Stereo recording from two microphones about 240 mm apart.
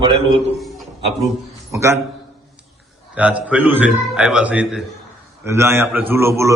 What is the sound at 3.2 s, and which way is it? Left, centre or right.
A man's voice, centre.